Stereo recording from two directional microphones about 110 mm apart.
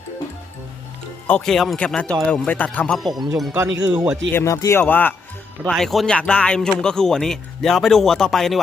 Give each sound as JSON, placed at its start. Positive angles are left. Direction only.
{"t": 1.3, "sound": "speech", "side_deg": 5}
{"t": 3.0, "sound": "speech", "side_deg": 0}
{"t": 3.5, "sound": "speech", "side_deg": -15}
{"t": 4.3, "sound": "speech", "side_deg": 20}
{"t": 5.6, "sound": "speech", "side_deg": 0}